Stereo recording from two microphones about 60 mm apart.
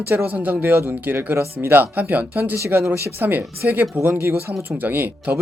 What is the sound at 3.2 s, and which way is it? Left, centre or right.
Speech, right.